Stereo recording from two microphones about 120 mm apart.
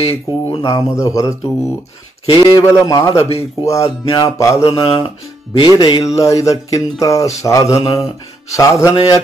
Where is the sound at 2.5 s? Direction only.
25° left (ahead or behind).